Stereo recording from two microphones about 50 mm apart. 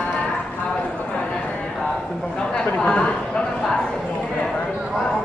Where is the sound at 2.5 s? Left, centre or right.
Centre.